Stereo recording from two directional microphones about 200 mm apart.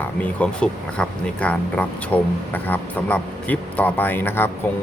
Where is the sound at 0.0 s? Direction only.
5° left (ahead or behind).